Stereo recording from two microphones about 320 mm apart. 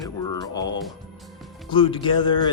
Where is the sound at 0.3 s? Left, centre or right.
Centre.